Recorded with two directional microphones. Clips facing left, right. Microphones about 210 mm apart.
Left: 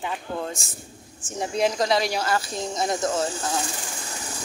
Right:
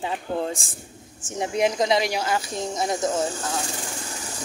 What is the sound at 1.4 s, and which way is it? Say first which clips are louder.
Speech: right 1 dB; 20° right (ahead or behind).